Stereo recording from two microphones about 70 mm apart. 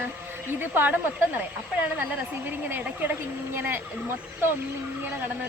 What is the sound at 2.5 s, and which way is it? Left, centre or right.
Speech, right.